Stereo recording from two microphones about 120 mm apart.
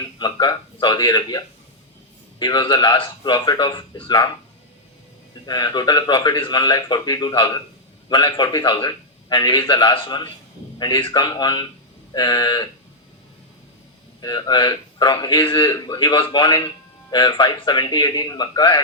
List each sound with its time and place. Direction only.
0.0 s a man's voice: 35° left (ahead or behind)
5.5 s a man's voice: 35° left (ahead or behind)
14.2 s a man's voice: 35° left (ahead or behind)